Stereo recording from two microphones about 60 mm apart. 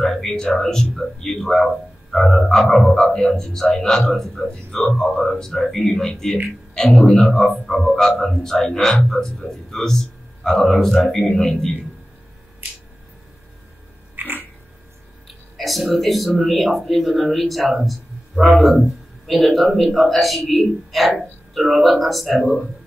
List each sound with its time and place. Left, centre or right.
0.0 s a man's voice: centre
14.1 s a sound: right
15.2 s a man's voice: centre